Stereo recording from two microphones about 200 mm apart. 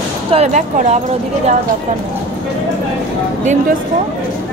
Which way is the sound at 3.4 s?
35° right (ahead or behind).